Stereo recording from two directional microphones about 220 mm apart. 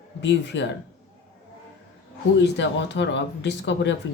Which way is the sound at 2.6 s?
55° left (ahead or behind).